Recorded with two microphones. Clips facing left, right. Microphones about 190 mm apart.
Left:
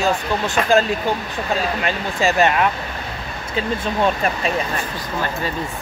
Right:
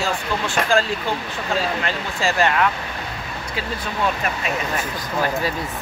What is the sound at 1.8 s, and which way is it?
Speech, 20° left (ahead or behind).